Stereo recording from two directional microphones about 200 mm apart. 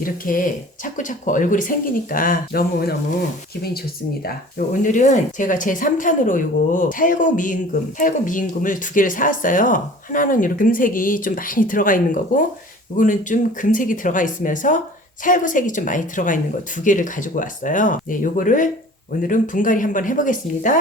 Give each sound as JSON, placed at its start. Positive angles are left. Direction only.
{"t": 0.0, "sound": "speech", "side_deg": 45}
{"t": 4.3, "sound": "speech", "side_deg": 40}